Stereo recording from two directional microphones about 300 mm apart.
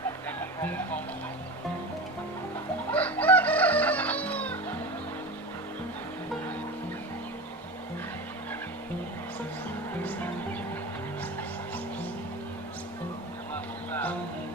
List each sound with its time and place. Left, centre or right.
0.3 s a sound: centre
2.9 s chicken: centre
10.0 s music: centre
13.9 s music: centre